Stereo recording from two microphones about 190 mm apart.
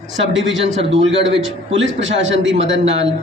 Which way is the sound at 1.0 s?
75° right (ahead or behind).